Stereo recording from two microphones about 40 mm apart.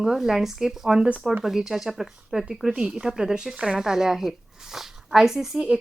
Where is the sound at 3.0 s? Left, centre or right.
Centre.